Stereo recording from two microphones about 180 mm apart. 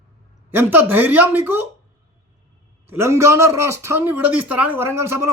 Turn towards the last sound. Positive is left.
turn(degrees=-15)  # may be behind; listen again after turning